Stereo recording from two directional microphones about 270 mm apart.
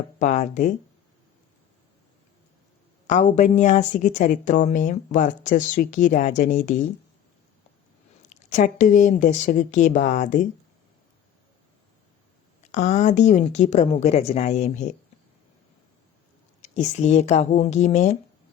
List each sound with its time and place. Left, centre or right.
0.2 s a woman's voice: left
3.1 s a woman's voice: left
8.4 s a woman's voice: left
12.7 s a woman's voice: left
16.6 s a woman's voice: left